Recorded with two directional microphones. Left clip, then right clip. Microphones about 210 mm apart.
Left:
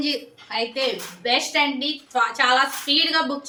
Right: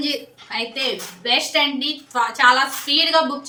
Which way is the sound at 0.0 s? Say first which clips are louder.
Right 1 dB; 10° right (ahead or behind).